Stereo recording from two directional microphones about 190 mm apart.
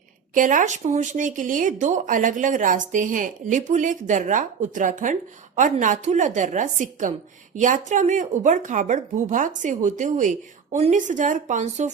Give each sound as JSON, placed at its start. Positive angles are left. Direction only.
{"t": 0.3, "sound": "speech", "side_deg": -45}